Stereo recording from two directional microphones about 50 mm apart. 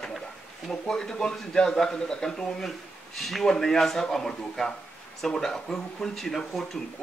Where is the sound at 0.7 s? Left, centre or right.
Centre.